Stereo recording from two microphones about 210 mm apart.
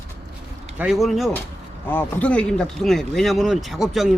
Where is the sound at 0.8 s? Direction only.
Centre (ahead or behind).